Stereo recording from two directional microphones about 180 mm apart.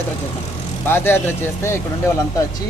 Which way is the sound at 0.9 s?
10° left (ahead or behind).